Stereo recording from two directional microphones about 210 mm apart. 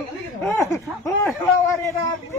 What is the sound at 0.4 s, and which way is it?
A man's voice, 5° left (ahead or behind).